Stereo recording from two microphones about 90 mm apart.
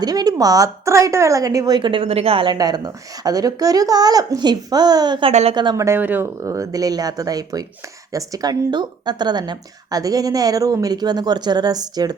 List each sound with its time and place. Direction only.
0.0 s speech: 45° right (ahead or behind); by 2.6 s 80° right
2.6 s speech: 45° right (ahead or behind)
5.7 s speech: 35° right (ahead or behind)
6.0 s speech: 20° right (ahead or behind)
6.4 s speech: 40° right (ahead or behind)